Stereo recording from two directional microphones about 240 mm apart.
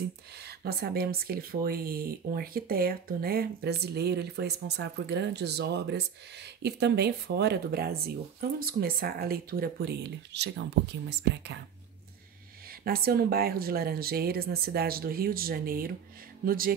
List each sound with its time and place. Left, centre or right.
0.4 s speech: right
12.6 s speech: right